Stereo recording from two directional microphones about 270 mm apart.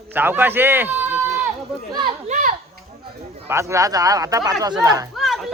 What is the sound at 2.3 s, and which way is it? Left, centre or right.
Speech, right.